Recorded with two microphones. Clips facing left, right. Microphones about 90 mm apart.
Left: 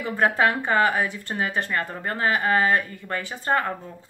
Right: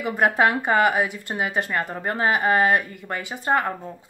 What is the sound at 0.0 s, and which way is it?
Speech, 15° right (ahead or behind).